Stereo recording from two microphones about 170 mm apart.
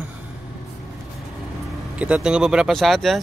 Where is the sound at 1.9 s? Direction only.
5° right (ahead or behind).